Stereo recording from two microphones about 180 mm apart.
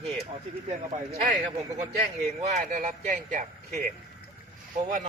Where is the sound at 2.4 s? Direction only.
40° right (ahead or behind).